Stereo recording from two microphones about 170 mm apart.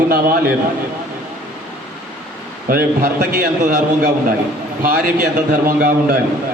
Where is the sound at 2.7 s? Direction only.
60° right (ahead or behind).